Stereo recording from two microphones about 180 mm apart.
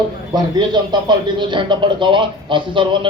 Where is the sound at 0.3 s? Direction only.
25° right (ahead or behind).